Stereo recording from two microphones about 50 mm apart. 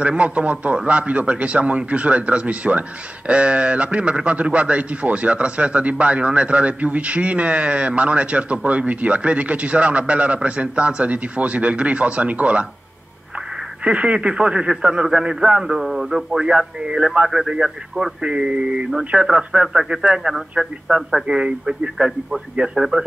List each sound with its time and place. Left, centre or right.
0.0 s a man's voice: right
13.8 s a man's voice: right
15.7 s speech: centre
17.3 s speech: centre